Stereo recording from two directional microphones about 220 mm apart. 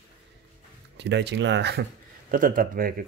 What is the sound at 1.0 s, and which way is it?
Speech, 50° right (ahead or behind).